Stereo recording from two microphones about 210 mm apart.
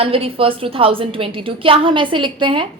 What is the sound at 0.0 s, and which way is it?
A woman's voice, 25° right (ahead or behind).